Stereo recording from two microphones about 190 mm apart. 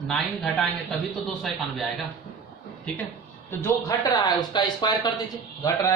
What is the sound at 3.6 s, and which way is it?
A man's voice, 20° left (ahead or behind).